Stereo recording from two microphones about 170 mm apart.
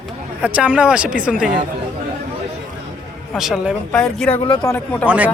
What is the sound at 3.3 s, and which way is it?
Speech, centre (ahead or behind).